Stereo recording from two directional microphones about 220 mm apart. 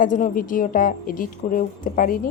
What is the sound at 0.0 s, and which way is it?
A woman's voice, 35° left (ahead or behind).